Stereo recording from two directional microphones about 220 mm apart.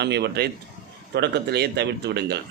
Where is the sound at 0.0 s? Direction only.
50° right (ahead or behind).